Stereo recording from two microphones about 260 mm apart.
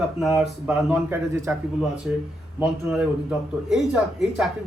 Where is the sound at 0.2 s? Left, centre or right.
Centre.